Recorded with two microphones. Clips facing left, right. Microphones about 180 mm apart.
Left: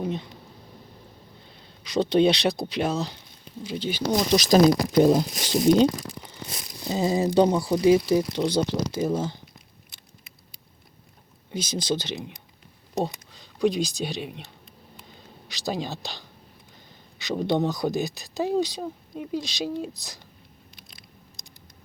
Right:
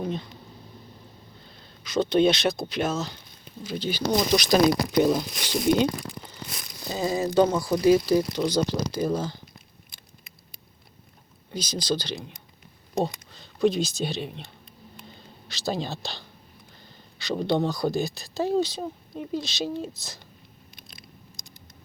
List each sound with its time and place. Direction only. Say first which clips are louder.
0.0 s speech: left 1 dB; 10° left (ahead or behind)
1.9 s speech: left 1 dB; 35° left (ahead or behind)
4.4 s speech: left 5 dB; 40° left (ahead or behind)
6.2 s tearing: left 1 dB; 20° left (ahead or behind)
7.6 s speech: left 1 dB; 20° left (ahead or behind)
11.7 s speech: even; 25° left (ahead or behind); by 14.5 s 5° left (ahead or behind)
15.6 s speech: even; 15° left (ahead or behind)
17.4 s speech: even; 20° left (ahead or behind)
18.8 s speech: even; 5° left (ahead or behind)